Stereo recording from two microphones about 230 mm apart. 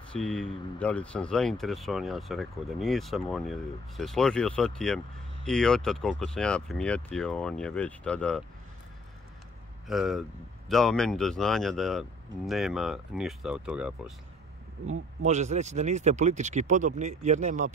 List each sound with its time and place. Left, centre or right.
0.1 s speech: centre
9.8 s speech: centre
15.2 s speech: right